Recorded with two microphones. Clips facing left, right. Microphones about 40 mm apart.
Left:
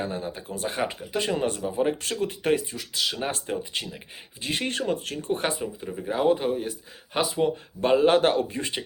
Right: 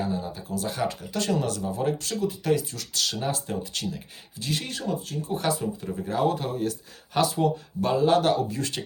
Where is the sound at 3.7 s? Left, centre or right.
Left.